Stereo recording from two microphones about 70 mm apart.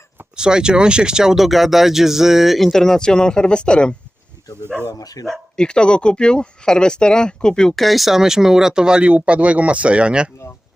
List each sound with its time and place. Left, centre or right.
0.3 s speech: centre
4.6 s speech: right
4.9 s speech: left
5.3 s speech: centre